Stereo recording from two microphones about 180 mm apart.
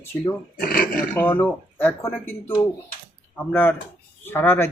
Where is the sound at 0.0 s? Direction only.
10° left (ahead or behind).